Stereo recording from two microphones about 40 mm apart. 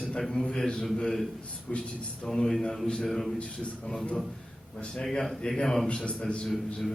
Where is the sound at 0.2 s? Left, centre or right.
Centre; by 1.8 s left.